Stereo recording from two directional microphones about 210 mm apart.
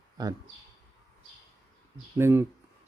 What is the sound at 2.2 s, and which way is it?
Speech, 10° right (ahead or behind).